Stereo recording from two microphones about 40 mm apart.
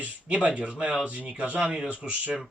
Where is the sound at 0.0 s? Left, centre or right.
Right.